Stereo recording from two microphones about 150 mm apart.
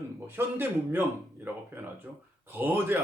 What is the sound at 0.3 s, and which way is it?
A man's voice, 15° right (ahead or behind).